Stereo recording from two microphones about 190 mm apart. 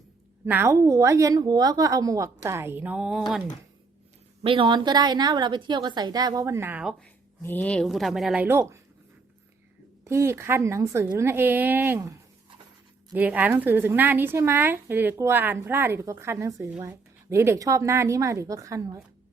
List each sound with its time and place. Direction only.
0.4 s speech: 10° right (ahead or behind)
4.4 s a woman's voice: 25° right (ahead or behind); by 6.9 s 10° right (ahead or behind)
7.0 s a woman's voice: 10° left (ahead or behind)
8.4 s speech: 15° right (ahead or behind)
10.0 s speech: 15° right (ahead or behind)
13.1 s speech: 10° right (ahead or behind)